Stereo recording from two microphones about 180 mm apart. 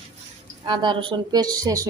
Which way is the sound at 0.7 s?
25° right (ahead or behind).